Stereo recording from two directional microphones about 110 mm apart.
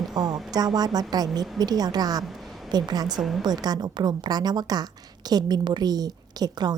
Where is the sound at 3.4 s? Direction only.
40° right (ahead or behind).